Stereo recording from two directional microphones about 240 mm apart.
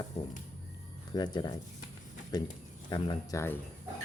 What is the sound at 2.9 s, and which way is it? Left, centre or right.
Speech, centre.